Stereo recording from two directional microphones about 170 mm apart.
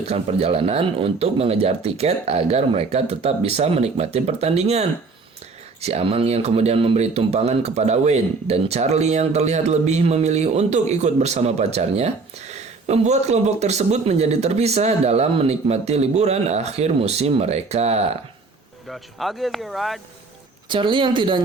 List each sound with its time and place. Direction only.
0.0 s speech: 35° right (ahead or behind)
18.9 s speech: centre (ahead or behind)
20.7 s speech: 30° right (ahead or behind)